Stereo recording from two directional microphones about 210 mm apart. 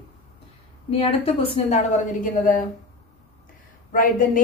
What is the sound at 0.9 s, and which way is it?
A woman's voice, 25° left (ahead or behind).